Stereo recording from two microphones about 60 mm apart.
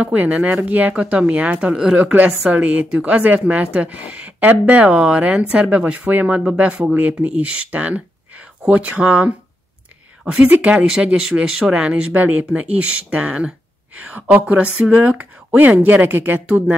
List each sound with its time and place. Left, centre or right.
0.0 s speech: right
10.6 s speech: right